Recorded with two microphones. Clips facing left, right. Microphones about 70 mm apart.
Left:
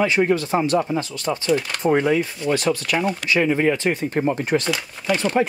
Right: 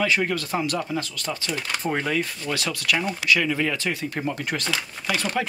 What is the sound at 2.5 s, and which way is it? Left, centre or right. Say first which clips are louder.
Speech: left 6 dB; left.